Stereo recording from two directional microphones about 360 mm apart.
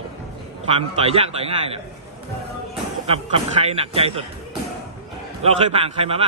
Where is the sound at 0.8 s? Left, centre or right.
Centre.